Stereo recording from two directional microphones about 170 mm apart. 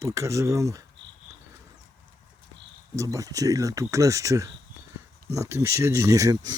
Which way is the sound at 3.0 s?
20° right (ahead or behind).